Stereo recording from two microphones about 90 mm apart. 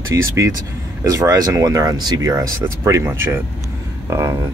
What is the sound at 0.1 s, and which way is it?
Speech, 35° right (ahead or behind).